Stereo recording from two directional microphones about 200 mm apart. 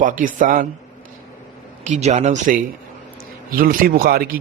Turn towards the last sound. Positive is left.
turn(degrees=-45)  # may be behind; listen again after turning